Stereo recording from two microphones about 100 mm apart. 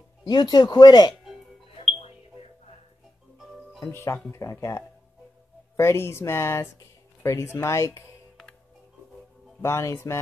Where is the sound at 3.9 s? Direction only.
25° left (ahead or behind).